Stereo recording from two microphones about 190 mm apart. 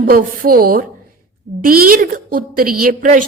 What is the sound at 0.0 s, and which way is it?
A woman's voice, 50° right (ahead or behind).